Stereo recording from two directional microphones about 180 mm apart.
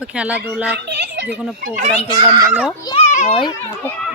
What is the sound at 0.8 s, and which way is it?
Speech, 70° right (ahead or behind).